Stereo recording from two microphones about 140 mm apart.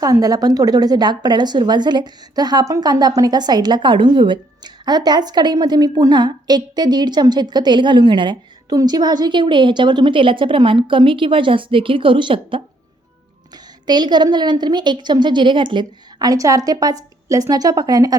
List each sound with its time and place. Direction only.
0.0 s a woman's voice: 25° right (ahead or behind)
13.8 s a woman's voice: 30° right (ahead or behind)